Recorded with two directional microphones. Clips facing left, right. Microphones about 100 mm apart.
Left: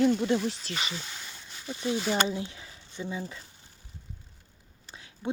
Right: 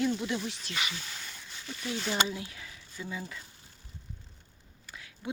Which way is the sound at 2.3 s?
25° left (ahead or behind).